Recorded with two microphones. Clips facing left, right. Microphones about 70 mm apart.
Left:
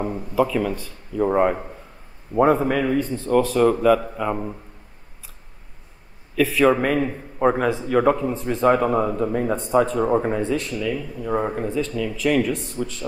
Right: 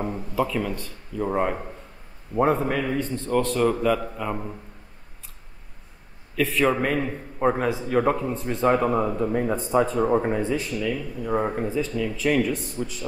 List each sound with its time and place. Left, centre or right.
0.0 s a man's voice: centre
6.3 s a man's voice: centre
10.4 s speech: centre
10.9 s a man's voice: centre